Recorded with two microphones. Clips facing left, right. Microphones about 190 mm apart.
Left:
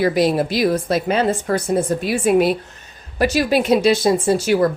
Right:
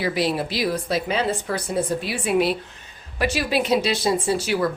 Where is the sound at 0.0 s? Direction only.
45° left (ahead or behind).